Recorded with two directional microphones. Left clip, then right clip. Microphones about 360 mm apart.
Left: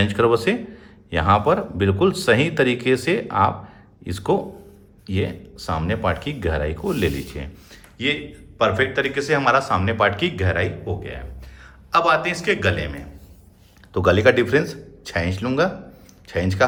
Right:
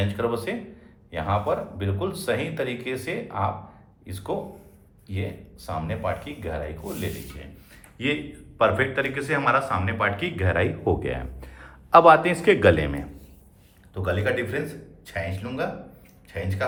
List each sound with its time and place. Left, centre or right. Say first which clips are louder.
0.0 s a man's voice: left 9 dB; left
7.7 s a man's voice: left 4 dB; centre
10.8 s a man's voice: right 5 dB; centre
13.9 s a man's voice: left 10 dB; centre